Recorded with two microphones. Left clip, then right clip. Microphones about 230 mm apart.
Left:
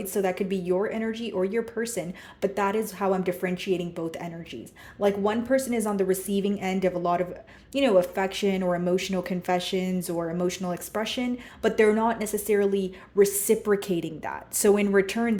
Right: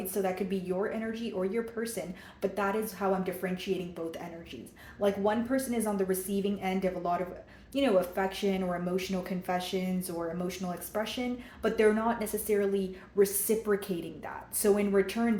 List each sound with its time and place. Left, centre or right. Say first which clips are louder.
0.1 s speech: left 5 dB; left